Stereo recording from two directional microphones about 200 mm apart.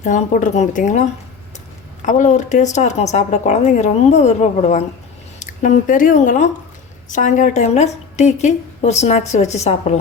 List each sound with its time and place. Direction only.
0.0 s a woman's voice: 40° left (ahead or behind)